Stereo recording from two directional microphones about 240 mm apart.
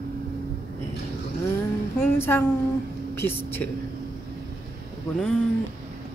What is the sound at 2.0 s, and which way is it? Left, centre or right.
Speech, centre.